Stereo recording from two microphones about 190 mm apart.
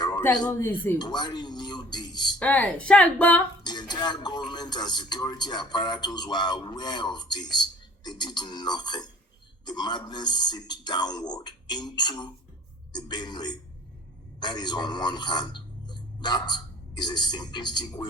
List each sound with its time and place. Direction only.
0.4 s a woman's voice: 10° left (ahead or behind)
0.9 s a sound: 20° left (ahead or behind)
2.4 s a woman's voice: 10° left (ahead or behind)
3.6 s a man's voice: 20° left (ahead or behind)